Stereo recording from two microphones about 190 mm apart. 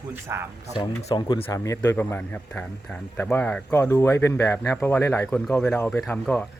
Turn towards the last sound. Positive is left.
turn(degrees=10)  # may be behind; listen again after turning